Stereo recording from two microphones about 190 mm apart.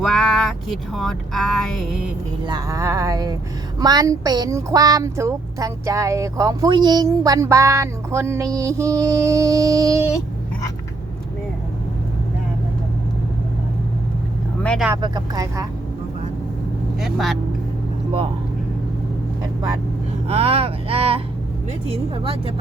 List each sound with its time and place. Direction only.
0.0 s speech: centre (ahead or behind)
2.5 s speech: 20° right (ahead or behind)
14.6 s vehicle: 5° left (ahead or behind)
15.0 s speech: 20° right (ahead or behind)
17.0 s speech: centre (ahead or behind)
20.2 s speech: 30° right (ahead or behind)